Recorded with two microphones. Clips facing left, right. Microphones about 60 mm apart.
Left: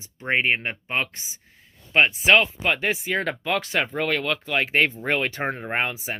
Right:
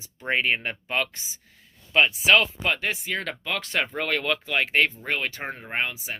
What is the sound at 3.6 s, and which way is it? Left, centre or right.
Speech, centre.